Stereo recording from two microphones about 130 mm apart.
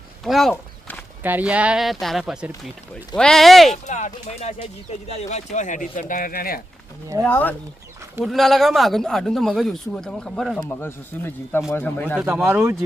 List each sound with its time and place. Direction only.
0.3 s speech: centre (ahead or behind)
1.2 s speech: 15° right (ahead or behind)
3.8 s speech: 65° left (ahead or behind); by 6.5 s 90° left
7.3 s speech: 15° left (ahead or behind)
8.2 s speech: centre (ahead or behind)
10.7 s speech: 15° left (ahead or behind)
12.5 s speech: 15° right (ahead or behind)